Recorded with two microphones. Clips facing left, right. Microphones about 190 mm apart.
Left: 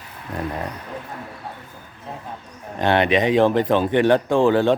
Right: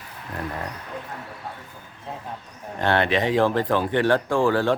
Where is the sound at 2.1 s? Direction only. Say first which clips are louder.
Left 1 dB; centre (ahead or behind).